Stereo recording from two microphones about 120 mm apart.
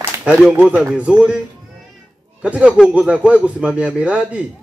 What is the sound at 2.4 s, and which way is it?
Speech, 10° right (ahead or behind).